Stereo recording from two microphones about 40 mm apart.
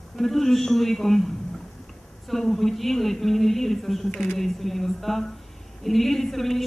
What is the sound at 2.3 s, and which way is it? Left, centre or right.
A woman's voice, centre.